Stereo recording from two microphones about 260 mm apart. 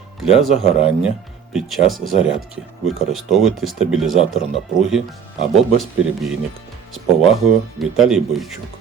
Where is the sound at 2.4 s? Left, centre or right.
Right.